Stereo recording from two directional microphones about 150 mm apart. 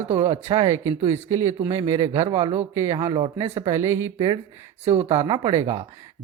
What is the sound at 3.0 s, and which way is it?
Speech, 25° right (ahead or behind).